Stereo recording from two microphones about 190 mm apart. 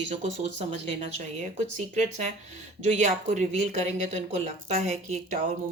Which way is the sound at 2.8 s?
35° right (ahead or behind).